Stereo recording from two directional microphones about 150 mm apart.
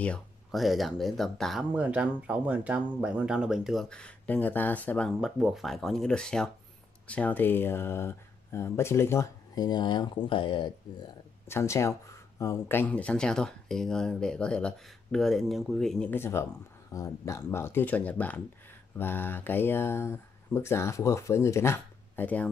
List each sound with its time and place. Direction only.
0.0 s speech: 5° left (ahead or behind)
1.7 s speech: 10° right (ahead or behind); by 11.1 s 35° left (ahead or behind)
11.4 s speech: 15° left (ahead or behind); by 16.1 s centre (ahead or behind)
16.1 s speech: 15° left (ahead or behind)